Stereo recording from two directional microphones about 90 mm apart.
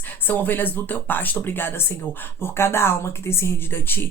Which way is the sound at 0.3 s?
25° left (ahead or behind).